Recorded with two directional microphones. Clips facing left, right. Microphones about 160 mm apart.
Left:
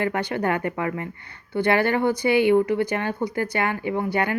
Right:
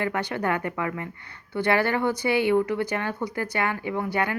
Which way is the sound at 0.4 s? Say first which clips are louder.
Left 2 dB; 25° left (ahead or behind).